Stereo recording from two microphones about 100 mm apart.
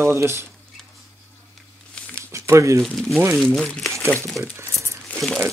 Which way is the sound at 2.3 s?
30° right (ahead or behind).